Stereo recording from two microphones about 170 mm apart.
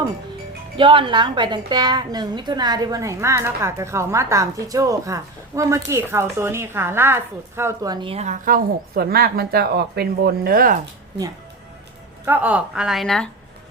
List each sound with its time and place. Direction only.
0.8 s a woman's voice: 30° right (ahead or behind)
8.1 s speech: 45° right (ahead or behind)
12.2 s speech: 10° right (ahead or behind)